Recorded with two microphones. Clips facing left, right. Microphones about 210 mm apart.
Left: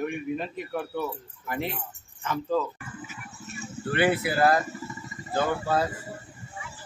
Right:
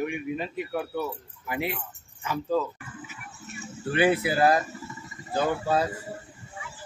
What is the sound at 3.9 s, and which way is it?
Speech, 15° right (ahead or behind).